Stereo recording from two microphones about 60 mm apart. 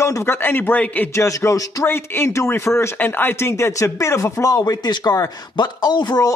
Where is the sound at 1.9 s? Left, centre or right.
Left.